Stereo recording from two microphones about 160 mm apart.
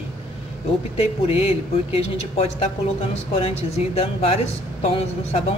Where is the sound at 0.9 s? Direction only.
40° left (ahead or behind).